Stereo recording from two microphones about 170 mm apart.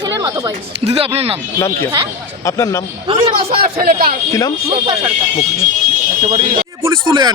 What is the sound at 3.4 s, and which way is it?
Speech, 60° right (ahead or behind).